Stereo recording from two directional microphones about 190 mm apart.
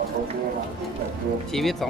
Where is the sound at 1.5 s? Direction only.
Centre (ahead or behind).